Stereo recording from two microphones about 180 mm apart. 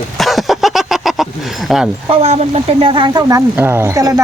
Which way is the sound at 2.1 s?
35° right (ahead or behind).